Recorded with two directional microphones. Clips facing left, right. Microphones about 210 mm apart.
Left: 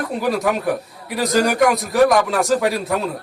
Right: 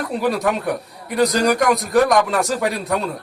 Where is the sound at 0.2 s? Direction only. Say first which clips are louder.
Even; centre (ahead or behind).